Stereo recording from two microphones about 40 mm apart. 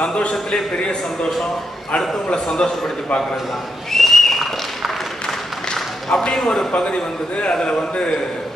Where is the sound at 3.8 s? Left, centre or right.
Centre.